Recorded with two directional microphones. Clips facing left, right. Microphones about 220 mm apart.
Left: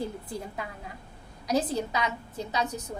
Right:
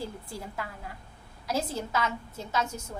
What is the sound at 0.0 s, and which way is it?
A woman's voice, 20° left (ahead or behind).